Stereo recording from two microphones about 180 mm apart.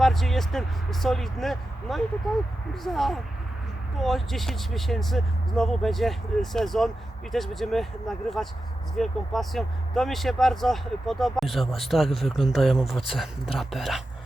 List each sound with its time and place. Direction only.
0.0 s speech: centre (ahead or behind)